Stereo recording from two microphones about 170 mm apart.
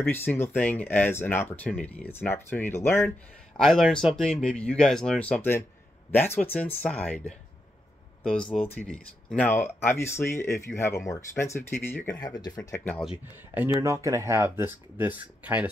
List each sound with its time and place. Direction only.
0.0 s speech: 10° left (ahead or behind)
3.5 s speech: centre (ahead or behind)
12.2 s speech: 25° left (ahead or behind)
13.0 s speech: 5° right (ahead or behind)